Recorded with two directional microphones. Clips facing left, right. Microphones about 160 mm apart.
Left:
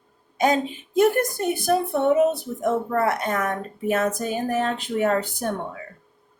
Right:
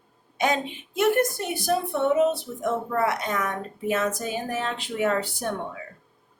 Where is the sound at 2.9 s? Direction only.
50° left (ahead or behind).